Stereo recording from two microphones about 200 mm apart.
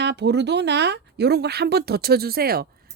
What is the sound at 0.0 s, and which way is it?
Speech, 60° right (ahead or behind).